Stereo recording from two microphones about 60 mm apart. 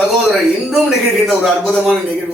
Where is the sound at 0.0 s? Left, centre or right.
Centre.